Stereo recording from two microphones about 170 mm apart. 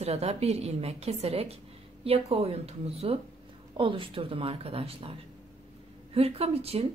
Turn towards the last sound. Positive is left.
turn(degrees=-35)  # may be behind; listen again after turning